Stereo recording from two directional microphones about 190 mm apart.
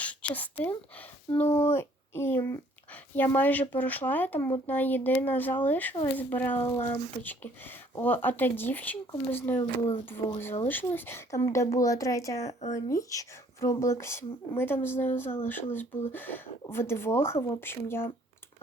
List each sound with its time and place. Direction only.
0.0 s a sound: 5° left (ahead or behind)
1.3 s speech: 10° left (ahead or behind)
12.4 s speech: 35° left (ahead or behind)
12.9 s speech: 15° left (ahead or behind)